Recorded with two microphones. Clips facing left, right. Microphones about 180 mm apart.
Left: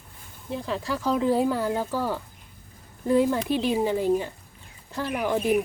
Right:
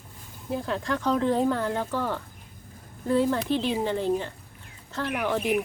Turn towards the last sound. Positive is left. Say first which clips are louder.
# left 2 dB
turn(degrees=10)  # may be behind; listen again after turning